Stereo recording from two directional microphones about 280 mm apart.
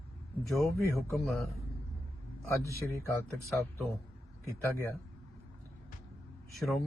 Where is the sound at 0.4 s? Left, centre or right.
Centre.